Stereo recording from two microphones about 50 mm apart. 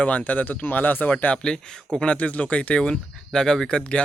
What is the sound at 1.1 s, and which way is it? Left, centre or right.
Speech, left.